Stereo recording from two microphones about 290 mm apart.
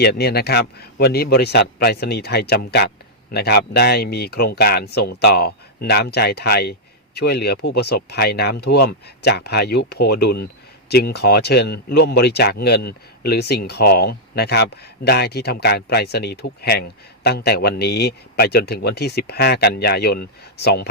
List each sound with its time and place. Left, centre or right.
0.0 s speech: left